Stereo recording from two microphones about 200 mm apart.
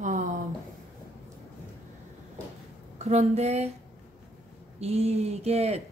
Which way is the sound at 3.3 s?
30° right (ahead or behind).